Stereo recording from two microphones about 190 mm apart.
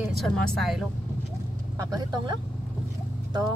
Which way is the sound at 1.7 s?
20° right (ahead or behind).